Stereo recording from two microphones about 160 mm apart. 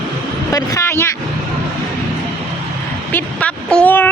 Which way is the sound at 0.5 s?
20° left (ahead or behind).